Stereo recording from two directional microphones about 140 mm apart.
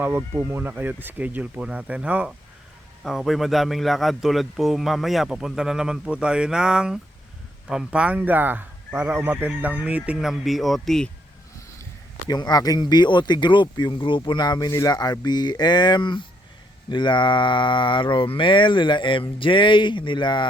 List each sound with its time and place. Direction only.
0.0 s a man's voice: 15° right (ahead or behind); by 11.1 s 5° left (ahead or behind)
12.3 s speech: 30° left (ahead or behind)